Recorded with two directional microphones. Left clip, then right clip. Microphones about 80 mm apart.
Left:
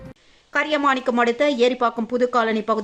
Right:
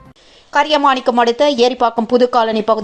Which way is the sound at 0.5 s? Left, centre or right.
Centre.